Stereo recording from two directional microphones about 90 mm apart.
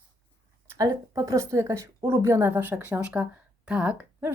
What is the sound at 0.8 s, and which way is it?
A woman's voice, 45° right (ahead or behind).